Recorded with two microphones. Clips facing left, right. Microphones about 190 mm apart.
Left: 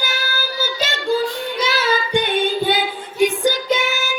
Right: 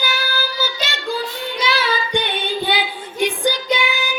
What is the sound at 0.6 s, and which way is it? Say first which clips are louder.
Child singing: left 2 dB; 45° left (ahead or behind).